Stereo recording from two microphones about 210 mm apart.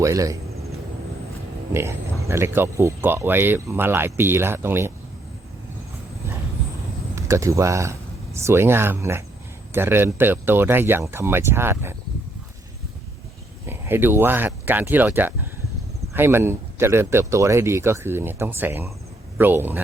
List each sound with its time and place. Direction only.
0.0 s speech: 15° right (ahead or behind)
1.7 s speech: 10° right (ahead or behind)
7.2 s speech: 15° right (ahead or behind)
13.7 s speech: 10° right (ahead or behind)